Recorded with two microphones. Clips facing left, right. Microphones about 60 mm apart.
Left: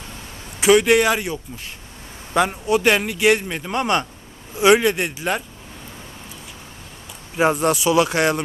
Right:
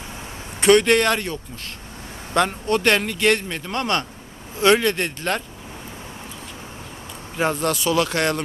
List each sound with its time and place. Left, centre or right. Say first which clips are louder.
0.6 s speech: left 1 dB; centre
7.3 s speech: left 4 dB; centre